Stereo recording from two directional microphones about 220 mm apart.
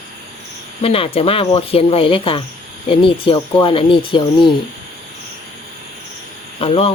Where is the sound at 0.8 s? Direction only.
25° left (ahead or behind).